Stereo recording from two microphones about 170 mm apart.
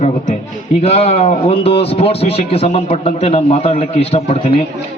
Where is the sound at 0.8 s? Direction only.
35° left (ahead or behind).